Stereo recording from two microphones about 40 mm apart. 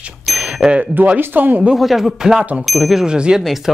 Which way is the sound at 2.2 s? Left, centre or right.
Centre.